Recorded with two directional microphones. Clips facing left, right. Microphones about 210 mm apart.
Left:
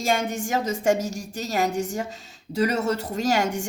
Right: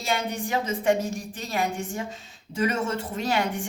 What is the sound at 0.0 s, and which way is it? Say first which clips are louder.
A woman's voice: left 3 dB; 45° left (ahead or behind).